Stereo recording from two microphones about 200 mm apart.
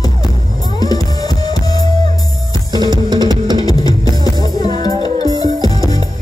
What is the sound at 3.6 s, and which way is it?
Music, 20° left (ahead or behind).